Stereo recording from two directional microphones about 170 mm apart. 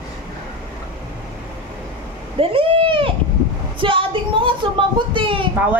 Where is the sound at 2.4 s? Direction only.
30° right (ahead or behind).